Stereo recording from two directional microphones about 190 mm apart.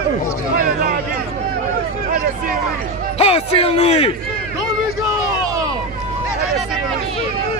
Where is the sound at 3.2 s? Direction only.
30° left (ahead or behind).